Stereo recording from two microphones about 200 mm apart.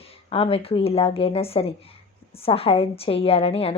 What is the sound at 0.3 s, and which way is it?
A woman's voice, 30° left (ahead or behind).